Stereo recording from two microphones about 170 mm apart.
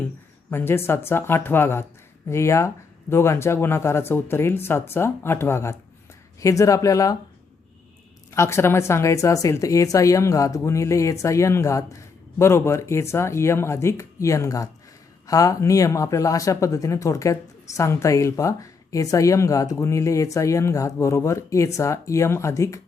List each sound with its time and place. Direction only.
0.5 s speech: 15° left (ahead or behind)
8.3 s speech: 15° left (ahead or behind)